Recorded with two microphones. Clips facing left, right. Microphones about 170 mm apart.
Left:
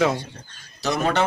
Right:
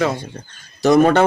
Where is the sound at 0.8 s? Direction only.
50° right (ahead or behind).